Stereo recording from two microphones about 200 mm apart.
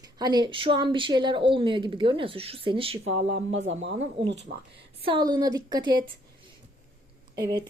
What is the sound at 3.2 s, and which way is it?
Speech, 70° right (ahead or behind).